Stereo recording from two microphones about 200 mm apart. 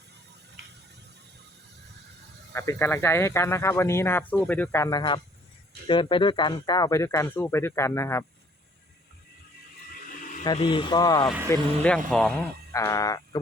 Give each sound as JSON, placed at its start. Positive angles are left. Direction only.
{"t": 2.5, "sound": "speech", "side_deg": 10}
{"t": 10.2, "sound": "a sound", "side_deg": 40}
{"t": 10.4, "sound": "speech", "side_deg": 20}
{"t": 11.4, "sound": "speech", "side_deg": 5}
{"t": 12.7, "sound": "speech", "side_deg": 15}